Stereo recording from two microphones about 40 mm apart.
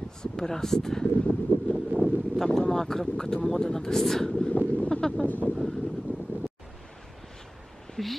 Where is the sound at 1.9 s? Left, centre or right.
Right.